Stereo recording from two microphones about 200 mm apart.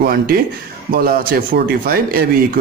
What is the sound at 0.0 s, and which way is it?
Speech, 45° right (ahead or behind).